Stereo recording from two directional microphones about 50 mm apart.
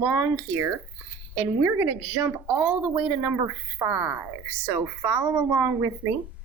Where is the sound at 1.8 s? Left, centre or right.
Right.